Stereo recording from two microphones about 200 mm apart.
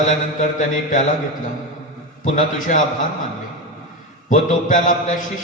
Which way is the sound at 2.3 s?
40° left (ahead or behind).